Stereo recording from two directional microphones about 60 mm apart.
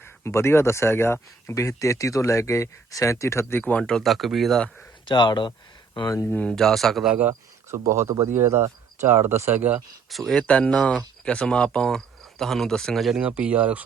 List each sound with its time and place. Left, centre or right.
0.3 s speech: left
3.6 s speech: left
3.8 s speech: centre
5.9 s speech: left
6.6 s speech: centre
7.1 s speech: right
7.7 s speech: right
10.1 s speech: centre
10.4 s speech: left
13.1 s speech: right